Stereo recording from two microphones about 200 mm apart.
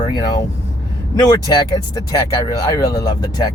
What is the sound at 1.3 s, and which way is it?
Speech, 20° left (ahead or behind).